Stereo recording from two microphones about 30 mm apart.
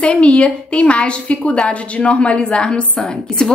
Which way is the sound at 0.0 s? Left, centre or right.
Left.